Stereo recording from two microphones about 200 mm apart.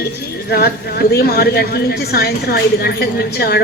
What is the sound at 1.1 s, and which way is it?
A woman's voice, 50° left (ahead or behind).